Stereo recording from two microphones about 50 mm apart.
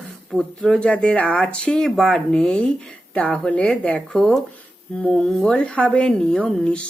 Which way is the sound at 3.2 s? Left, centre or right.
Left.